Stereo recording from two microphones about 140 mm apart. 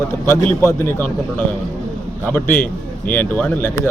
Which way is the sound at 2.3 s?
10° left (ahead or behind).